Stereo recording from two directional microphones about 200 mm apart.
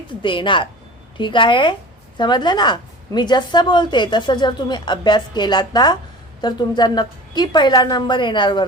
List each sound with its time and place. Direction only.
0.2 s a woman's voice: 25° left (ahead or behind)